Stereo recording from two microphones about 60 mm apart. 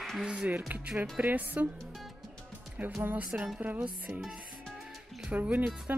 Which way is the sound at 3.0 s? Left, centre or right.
Right.